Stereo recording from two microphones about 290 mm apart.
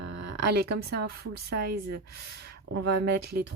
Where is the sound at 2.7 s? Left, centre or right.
Right.